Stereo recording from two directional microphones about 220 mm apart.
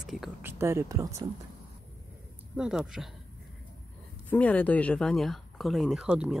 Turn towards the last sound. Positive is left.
turn(degrees=-5)  # may be behind; listen again after turning